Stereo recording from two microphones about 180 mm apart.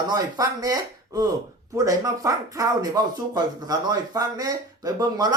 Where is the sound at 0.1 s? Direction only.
20° right (ahead or behind).